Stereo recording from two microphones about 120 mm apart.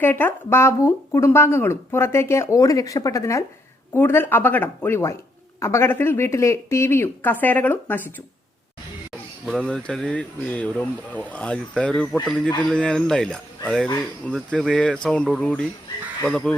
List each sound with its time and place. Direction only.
0.0 s speech: 15° left (ahead or behind)
9.5 s speech: 5° left (ahead or behind)